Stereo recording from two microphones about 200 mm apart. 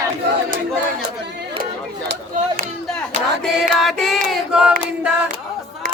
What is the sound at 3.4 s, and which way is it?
Choir, centre (ahead or behind).